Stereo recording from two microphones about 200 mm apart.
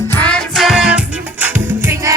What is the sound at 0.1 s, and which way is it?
Music, 5° left (ahead or behind).